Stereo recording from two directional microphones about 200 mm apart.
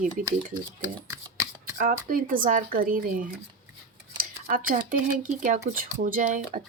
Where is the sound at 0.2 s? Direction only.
40° right (ahead or behind).